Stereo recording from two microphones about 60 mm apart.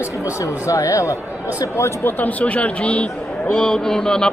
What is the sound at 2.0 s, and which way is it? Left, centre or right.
A man's voice, left.